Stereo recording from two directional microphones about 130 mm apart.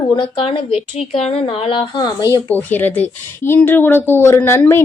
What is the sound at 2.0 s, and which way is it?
Speech, 30° left (ahead or behind).